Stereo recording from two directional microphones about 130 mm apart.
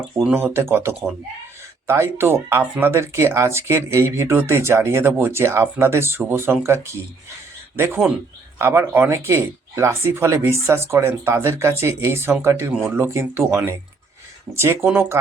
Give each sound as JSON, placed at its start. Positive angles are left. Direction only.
{"t": 0.3, "sound": "speech", "side_deg": -20}